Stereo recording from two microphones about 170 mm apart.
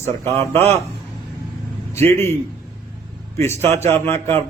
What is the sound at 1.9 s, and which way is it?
Speech, 15° left (ahead or behind).